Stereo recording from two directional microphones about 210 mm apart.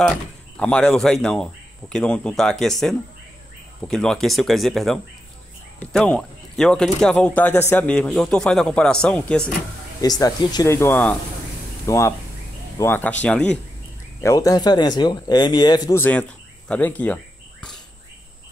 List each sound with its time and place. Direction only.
0.0 s speech: 5° left (ahead or behind)
10.0 s speech: 20° left (ahead or behind)
14.2 s speech: 15° left (ahead or behind)